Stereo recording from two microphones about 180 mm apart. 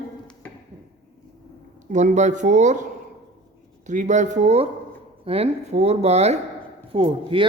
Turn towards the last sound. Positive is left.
turn(degrees=-30)  # may be behind; listen again after turning